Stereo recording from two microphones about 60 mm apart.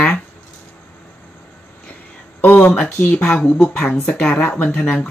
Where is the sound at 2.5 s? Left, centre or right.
Left.